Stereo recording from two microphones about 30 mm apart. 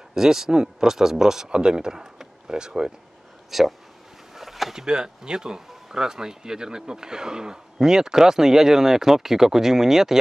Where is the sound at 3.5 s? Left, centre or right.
Centre.